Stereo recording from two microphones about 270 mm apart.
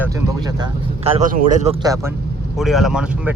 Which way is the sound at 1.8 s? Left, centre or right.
Centre.